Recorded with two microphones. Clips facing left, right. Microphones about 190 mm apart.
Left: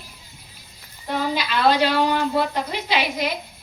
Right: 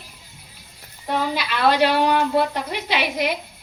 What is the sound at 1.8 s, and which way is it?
A woman's voice, 60° right (ahead or behind).